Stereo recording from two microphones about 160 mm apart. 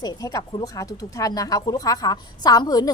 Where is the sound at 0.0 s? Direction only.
25° left (ahead or behind).